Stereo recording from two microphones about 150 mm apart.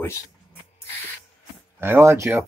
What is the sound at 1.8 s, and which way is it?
Speech, 15° right (ahead or behind).